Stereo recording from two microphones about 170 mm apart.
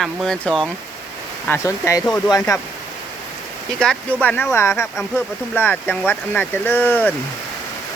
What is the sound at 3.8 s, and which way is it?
Speech, 5° left (ahead or behind).